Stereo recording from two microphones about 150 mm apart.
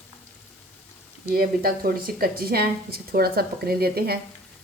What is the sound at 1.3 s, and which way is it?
A woman's voice, 75° right (ahead or behind).